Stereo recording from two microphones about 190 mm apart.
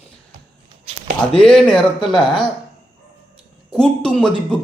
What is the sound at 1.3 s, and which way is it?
Speech, 5° left (ahead or behind).